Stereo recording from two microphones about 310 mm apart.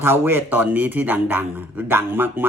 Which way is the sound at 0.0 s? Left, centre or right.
Centre.